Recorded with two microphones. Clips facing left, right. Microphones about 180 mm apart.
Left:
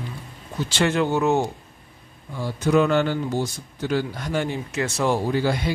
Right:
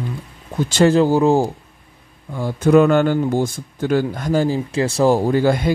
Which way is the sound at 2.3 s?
55° right (ahead or behind).